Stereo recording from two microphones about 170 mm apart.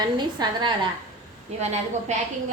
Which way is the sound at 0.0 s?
25° right (ahead or behind).